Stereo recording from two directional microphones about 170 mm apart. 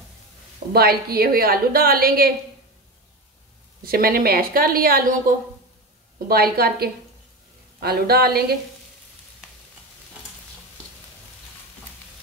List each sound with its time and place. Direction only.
0.7 s a woman's voice: 65° right (ahead or behind)
3.8 s a woman's voice: 60° right (ahead or behind)